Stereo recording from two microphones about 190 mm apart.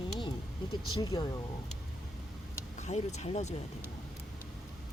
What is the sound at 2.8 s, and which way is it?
Speech, 35° left (ahead or behind).